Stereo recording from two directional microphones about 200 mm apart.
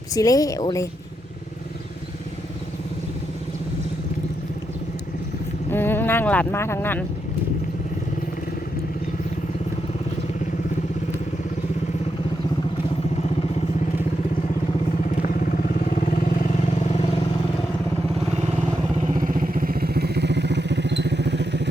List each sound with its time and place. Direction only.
0.1 s speech: 15° left (ahead or behind)
5.7 s a sound: 10° left (ahead or behind)
15.1 s vehicle: 45° left (ahead or behind)
19.1 s vehicle: 40° right (ahead or behind); by 21.7 s 60° right (ahead or behind)